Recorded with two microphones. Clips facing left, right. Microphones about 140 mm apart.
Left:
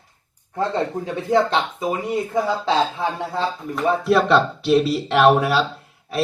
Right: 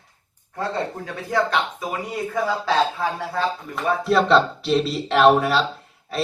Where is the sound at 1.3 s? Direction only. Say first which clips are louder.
Left 3 dB; 25° left (ahead or behind).